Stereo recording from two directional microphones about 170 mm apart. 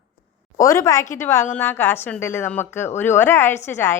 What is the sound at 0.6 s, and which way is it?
A woman's voice, 20° left (ahead or behind).